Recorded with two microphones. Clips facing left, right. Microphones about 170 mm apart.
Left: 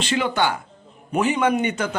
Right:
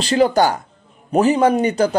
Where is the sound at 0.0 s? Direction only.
40° right (ahead or behind).